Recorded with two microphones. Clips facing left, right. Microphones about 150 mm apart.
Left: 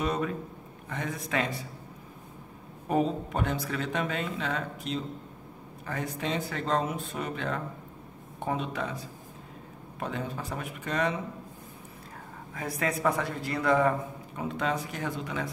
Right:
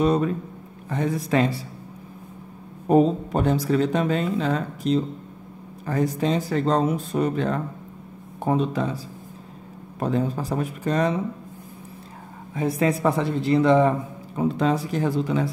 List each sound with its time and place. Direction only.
0.0 s speech: 35° right (ahead or behind)
2.9 s speech: 35° right (ahead or behind)
12.5 s speech: 25° right (ahead or behind)